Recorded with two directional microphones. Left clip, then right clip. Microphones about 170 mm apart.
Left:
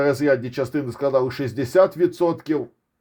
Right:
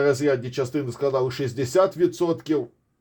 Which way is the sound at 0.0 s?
40° left (ahead or behind).